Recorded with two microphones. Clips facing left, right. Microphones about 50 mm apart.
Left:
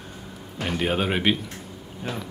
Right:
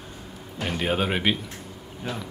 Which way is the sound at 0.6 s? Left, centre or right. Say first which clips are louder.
Left 1 dB; centre.